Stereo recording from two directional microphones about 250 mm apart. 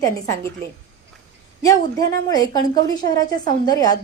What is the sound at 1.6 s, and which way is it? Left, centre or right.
A woman's voice, centre.